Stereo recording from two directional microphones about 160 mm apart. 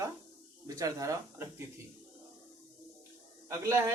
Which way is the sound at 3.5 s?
20° right (ahead or behind).